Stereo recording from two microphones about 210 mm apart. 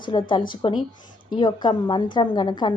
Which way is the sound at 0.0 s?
20° left (ahead or behind).